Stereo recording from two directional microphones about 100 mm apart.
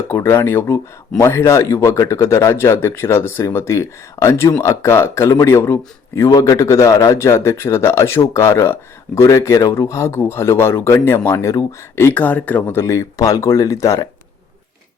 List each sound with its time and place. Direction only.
0.1 s speech: 25° left (ahead or behind)